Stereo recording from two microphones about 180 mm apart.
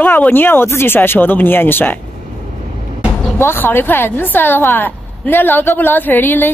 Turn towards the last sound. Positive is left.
turn(degrees=10)  # may be behind; listen again after turning